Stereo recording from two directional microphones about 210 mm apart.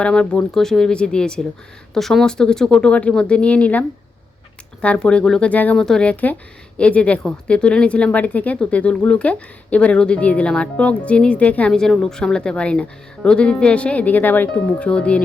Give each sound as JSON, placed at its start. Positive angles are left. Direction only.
{"t": 0.0, "sound": "speech", "side_deg": 5}